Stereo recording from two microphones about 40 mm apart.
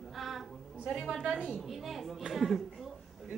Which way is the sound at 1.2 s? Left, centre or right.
Centre.